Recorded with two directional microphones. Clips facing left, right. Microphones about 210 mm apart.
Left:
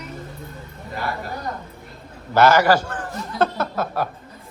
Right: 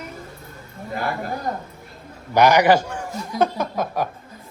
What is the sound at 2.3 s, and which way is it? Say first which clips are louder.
A man's voice: right 1 dB; 15° right (ahead or behind).